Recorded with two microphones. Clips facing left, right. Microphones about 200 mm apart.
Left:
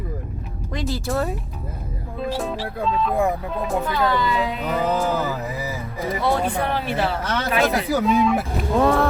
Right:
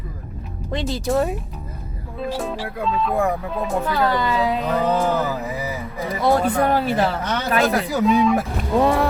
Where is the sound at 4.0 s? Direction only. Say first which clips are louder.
Right 2 dB; 30° right (ahead or behind).